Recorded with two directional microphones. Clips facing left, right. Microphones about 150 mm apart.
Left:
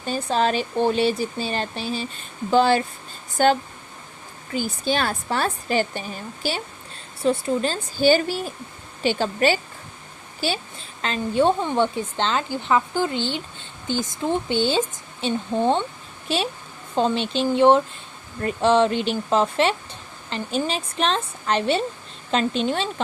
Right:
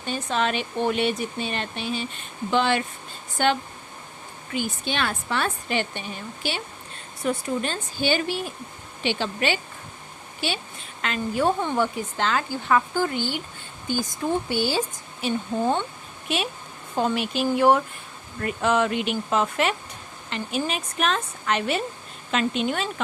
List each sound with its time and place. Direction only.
0.3 s speech: 35° left (ahead or behind)
11.0 s speech: 30° left (ahead or behind)